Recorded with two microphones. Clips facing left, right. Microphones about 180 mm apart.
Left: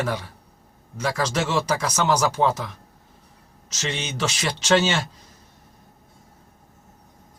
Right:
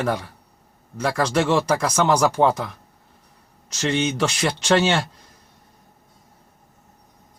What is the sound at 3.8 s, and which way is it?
Speech, centre (ahead or behind).